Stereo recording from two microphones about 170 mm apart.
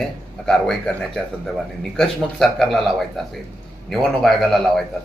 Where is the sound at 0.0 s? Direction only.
Centre (ahead or behind).